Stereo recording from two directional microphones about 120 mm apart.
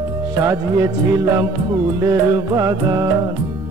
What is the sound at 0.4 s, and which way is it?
Music, 25° right (ahead or behind).